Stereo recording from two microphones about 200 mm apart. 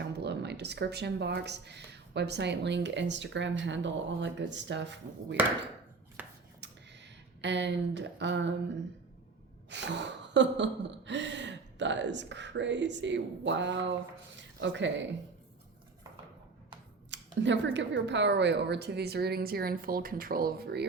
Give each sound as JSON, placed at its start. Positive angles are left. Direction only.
{"t": 0.0, "sound": "speech", "side_deg": -55}
{"t": 3.6, "sound": "gasp", "side_deg": -65}
{"t": 6.2, "sound": "finger snapping", "side_deg": -10}
{"t": 6.6, "sound": "a sound", "side_deg": -60}
{"t": 9.6, "sound": "gasp", "side_deg": -60}
{"t": 14.3, "sound": "a sound", "side_deg": -65}
{"t": 17.4, "sound": "a woman's voice", "side_deg": -65}